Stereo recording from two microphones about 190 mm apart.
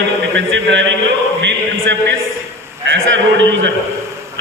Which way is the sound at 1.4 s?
70° right (ahead or behind).